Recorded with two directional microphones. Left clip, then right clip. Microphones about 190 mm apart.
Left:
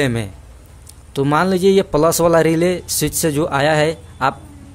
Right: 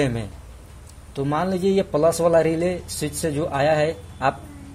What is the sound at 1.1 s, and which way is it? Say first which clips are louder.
A man's voice: left 8 dB; 35° left (ahead or behind).